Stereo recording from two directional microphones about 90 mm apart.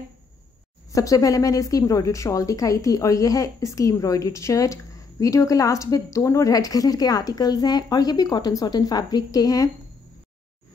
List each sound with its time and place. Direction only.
0.9 s a woman's voice: 40° left (ahead or behind)